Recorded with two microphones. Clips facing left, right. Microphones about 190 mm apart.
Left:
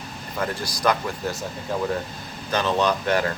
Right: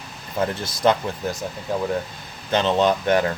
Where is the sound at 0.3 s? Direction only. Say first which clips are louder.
Right 3 dB; 25° right (ahead or behind).